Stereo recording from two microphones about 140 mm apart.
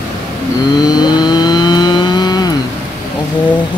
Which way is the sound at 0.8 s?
30° left (ahead or behind).